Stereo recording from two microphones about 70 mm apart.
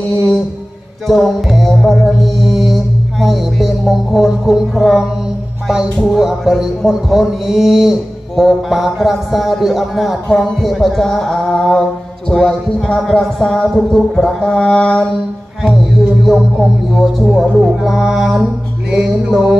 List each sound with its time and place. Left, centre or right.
1.0 s music: centre
12.3 s speech: centre
16.3 s speech: centre